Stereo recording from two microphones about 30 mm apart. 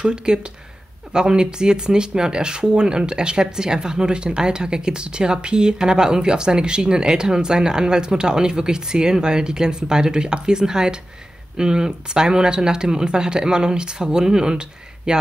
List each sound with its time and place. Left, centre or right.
0.0 s speech: right